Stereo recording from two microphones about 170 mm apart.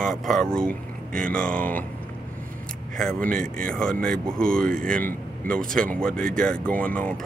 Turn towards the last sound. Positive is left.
turn(degrees=5)  # may be behind; listen again after turning